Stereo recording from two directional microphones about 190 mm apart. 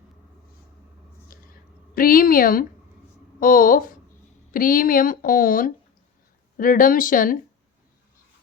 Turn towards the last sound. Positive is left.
turn(degrees=45)  # may be behind; listen again after turning